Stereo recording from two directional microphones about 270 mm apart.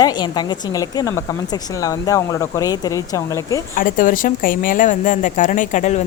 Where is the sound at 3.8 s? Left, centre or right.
Left.